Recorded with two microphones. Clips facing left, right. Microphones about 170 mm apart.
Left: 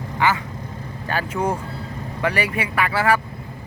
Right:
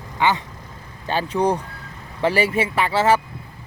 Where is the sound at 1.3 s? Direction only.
5° left (ahead or behind).